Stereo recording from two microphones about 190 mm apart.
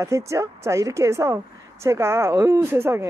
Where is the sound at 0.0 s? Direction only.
15° right (ahead or behind).